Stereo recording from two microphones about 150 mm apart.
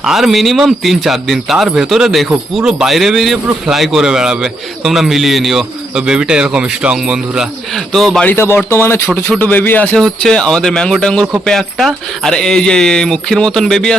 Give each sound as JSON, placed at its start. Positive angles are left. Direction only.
{"t": 0.0, "sound": "a man's voice", "side_deg": 0}